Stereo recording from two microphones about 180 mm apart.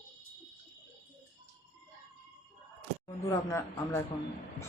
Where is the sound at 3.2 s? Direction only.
15° left (ahead or behind).